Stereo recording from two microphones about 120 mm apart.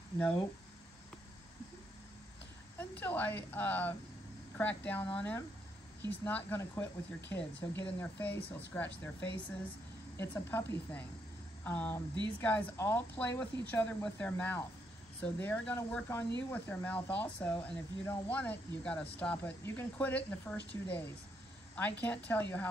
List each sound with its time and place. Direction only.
2.8 s speech: 15° left (ahead or behind)
10.1 s speech: 20° left (ahead or behind)
16.1 s speech: 20° left (ahead or behind)